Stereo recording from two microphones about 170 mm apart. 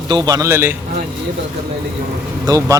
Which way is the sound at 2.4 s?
20° right (ahead or behind).